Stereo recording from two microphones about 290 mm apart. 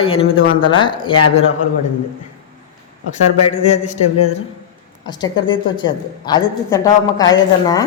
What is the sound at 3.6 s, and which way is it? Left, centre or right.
Speech, left.